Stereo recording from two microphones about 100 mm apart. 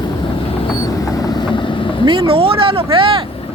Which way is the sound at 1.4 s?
55° left (ahead or behind).